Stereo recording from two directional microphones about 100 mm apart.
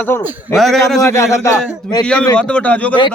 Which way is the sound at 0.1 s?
20° left (ahead or behind).